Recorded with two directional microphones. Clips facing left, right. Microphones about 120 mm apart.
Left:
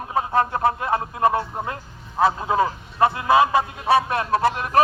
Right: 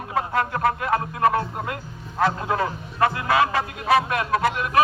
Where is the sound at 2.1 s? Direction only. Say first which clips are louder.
Left 3 dB; 15° left (ahead or behind); by 4.8 s 35° left (ahead or behind).